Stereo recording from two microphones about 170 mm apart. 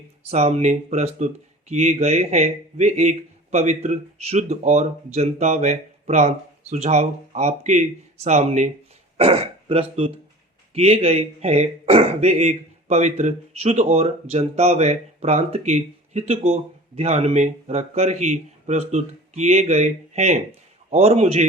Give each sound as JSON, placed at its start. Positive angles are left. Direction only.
{"t": 0.2, "sound": "speech", "side_deg": -40}